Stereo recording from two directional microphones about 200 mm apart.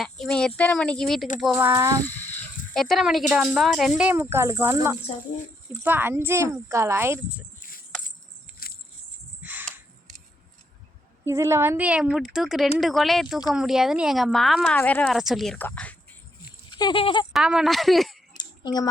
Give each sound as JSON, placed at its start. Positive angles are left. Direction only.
{"t": 0.0, "sound": "speech", "side_deg": 0}
{"t": 1.5, "sound": "speech", "side_deg": -10}
{"t": 2.0, "sound": "speech", "side_deg": 10}
{"t": 8.5, "sound": "a sound", "side_deg": 45}
{"t": 9.4, "sound": "a sound", "side_deg": -10}
{"t": 11.3, "sound": "speech", "side_deg": -15}
{"t": 16.7, "sound": "speech", "side_deg": 25}
{"t": 17.3, "sound": "speech", "side_deg": -5}
{"t": 18.3, "sound": "a sound", "side_deg": 20}